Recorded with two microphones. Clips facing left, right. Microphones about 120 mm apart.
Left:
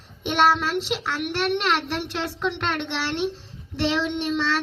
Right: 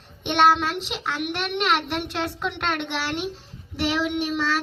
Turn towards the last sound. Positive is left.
turn(degrees=-5)  # may be behind; listen again after turning